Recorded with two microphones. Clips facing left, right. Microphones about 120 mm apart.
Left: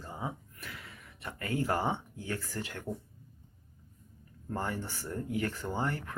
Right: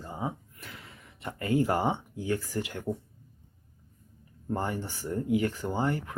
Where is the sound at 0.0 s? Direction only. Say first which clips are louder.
Right 4 dB; 20° right (ahead or behind).